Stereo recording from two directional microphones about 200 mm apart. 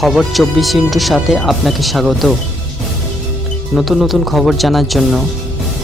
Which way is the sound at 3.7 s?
Centre (ahead or behind).